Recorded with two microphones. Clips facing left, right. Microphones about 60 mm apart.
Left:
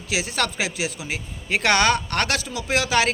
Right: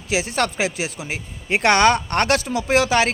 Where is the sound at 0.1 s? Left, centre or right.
Right.